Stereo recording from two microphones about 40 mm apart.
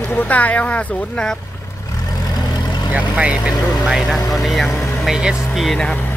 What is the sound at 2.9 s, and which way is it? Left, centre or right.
Speech, right.